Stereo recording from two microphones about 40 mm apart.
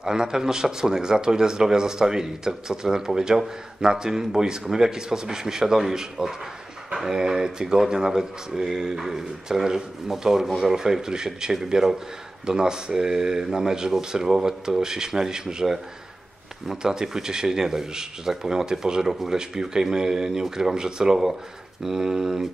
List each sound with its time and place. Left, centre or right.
0.0 s speech: centre
16.6 s speech: centre